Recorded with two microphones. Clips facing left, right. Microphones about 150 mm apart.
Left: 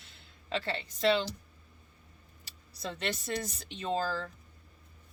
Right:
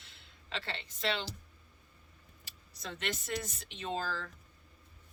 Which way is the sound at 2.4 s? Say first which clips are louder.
Left 6 dB; 35° left (ahead or behind).